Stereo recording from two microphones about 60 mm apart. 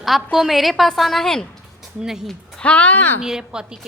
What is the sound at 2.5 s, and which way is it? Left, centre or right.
Speech, left.